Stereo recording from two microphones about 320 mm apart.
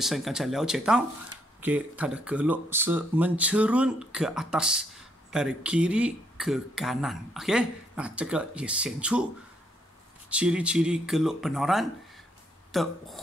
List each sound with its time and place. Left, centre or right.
0.0 s speech: centre
10.3 s speech: centre